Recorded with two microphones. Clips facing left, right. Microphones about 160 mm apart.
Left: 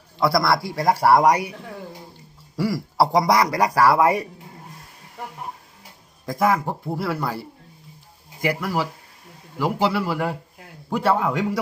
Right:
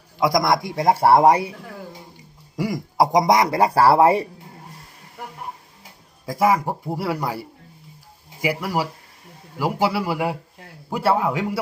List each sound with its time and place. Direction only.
0.2 s a man's voice: 15° right (ahead or behind)
2.6 s a man's voice: 15° right (ahead or behind)
6.2 s speech: 10° right (ahead or behind)